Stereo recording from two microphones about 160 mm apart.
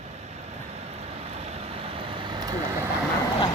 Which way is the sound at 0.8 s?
40° right (ahead or behind).